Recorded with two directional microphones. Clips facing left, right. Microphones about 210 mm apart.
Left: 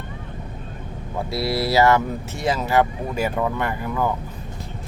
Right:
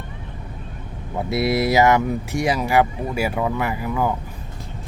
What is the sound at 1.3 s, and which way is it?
Speech, 20° right (ahead or behind).